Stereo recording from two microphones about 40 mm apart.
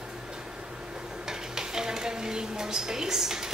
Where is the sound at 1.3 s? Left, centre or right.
Centre.